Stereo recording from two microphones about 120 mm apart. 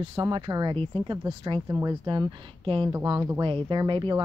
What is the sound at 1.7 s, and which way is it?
Speech, 30° right (ahead or behind).